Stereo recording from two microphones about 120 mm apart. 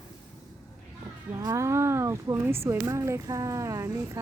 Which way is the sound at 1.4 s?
25° right (ahead or behind).